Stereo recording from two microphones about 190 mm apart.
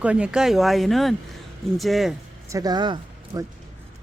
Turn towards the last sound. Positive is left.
turn(degrees=-25)  # may be behind; listen again after turning